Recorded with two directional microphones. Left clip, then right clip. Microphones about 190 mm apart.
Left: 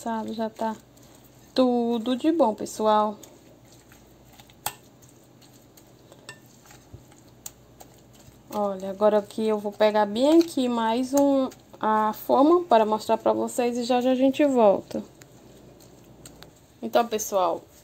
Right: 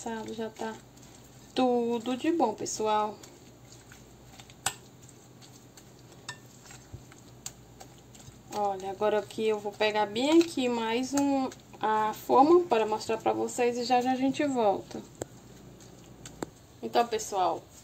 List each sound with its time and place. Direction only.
0.0 s speech: 40° left (ahead or behind)
8.5 s speech: 40° left (ahead or behind)
16.8 s a woman's voice: 50° left (ahead or behind)